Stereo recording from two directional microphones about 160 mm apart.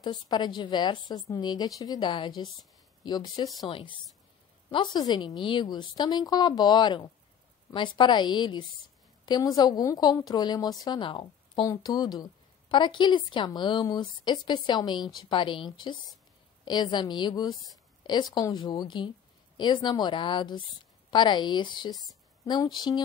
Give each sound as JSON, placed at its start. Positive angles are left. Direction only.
{"t": 0.0, "sound": "a woman's voice", "side_deg": 25}